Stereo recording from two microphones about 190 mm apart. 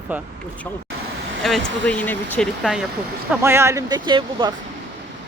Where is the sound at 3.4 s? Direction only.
15° right (ahead or behind).